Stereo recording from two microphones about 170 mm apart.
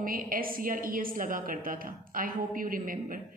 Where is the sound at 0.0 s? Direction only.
55° right (ahead or behind).